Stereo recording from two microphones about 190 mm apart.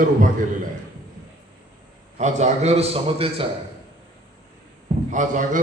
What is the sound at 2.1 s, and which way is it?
A man's voice, 35° right (ahead or behind).